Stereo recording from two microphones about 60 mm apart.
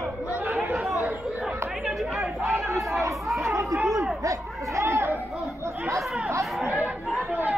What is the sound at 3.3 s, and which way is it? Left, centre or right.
Chatter, centre.